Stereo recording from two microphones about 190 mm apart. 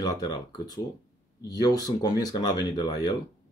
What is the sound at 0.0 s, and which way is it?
Speech, 20° left (ahead or behind).